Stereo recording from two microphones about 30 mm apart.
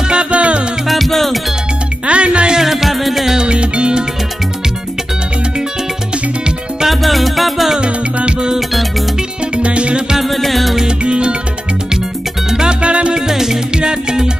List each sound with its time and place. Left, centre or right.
0.1 s music: right
0.8 s music: centre
2.0 s music: right
2.5 s music: centre
3.3 s music: right
6.9 s music: centre
7.8 s music: right
9.6 s music: right
10.2 s music: centre
10.9 s music: right
12.6 s music: right
13.3 s music: centre
13.7 s music: right